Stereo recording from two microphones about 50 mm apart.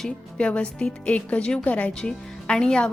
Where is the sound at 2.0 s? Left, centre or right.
Centre.